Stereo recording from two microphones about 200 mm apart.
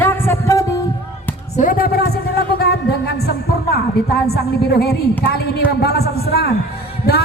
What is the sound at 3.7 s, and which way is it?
Music, 55° left (ahead or behind).